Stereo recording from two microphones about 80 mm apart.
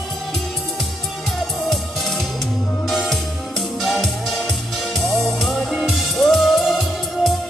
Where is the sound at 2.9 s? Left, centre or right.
Centre.